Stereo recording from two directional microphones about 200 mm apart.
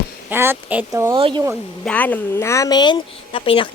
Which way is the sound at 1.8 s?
5° left (ahead or behind).